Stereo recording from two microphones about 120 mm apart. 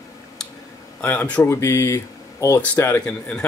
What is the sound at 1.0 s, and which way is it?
Speech, 10° left (ahead or behind).